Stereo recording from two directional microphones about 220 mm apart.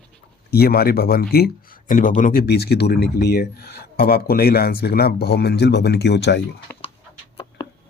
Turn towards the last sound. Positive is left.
turn(degrees=50)  # may be behind; listen again after turning